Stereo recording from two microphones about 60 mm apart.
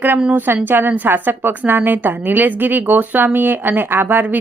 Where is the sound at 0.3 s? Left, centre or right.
Right.